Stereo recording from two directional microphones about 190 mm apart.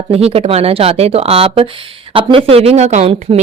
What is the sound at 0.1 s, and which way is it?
Speech, 30° right (ahead or behind).